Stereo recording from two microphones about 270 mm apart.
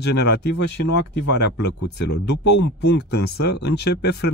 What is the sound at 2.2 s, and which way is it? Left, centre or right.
Speech, left.